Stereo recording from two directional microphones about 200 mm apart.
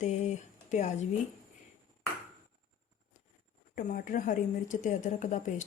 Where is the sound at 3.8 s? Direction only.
45° left (ahead or behind).